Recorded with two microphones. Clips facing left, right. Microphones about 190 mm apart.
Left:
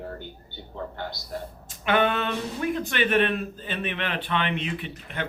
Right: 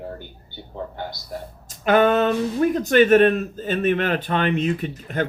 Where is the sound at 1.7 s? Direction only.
40° right (ahead or behind).